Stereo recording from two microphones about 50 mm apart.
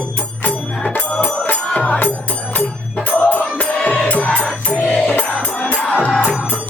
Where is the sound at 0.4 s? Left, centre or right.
Left.